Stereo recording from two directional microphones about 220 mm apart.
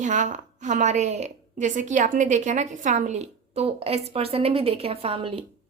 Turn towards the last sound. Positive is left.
turn(degrees=-25)  # may be behind; listen again after turning